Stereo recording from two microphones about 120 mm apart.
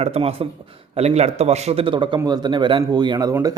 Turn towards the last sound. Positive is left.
turn(degrees=-35)  # may be behind; listen again after turning